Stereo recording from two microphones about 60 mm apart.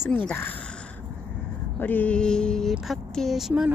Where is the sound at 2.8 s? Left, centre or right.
Centre.